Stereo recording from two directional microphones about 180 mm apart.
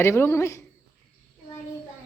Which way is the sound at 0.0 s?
15° left (ahead or behind).